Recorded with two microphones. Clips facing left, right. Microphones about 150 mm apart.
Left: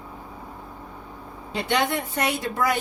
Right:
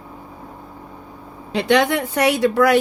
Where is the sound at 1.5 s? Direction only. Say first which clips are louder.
Right 7 dB; 80° right.